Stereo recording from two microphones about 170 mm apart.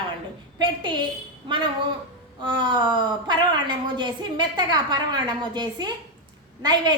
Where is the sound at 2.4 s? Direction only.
30° right (ahead or behind).